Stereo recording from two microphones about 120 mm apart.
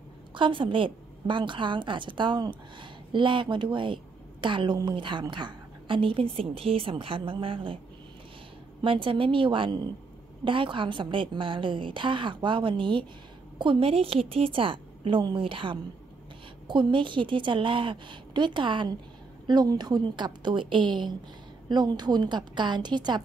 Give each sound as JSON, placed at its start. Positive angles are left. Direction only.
{"t": 0.3, "sound": "a woman's voice", "side_deg": -45}
{"t": 8.8, "sound": "a woman's voice", "side_deg": -50}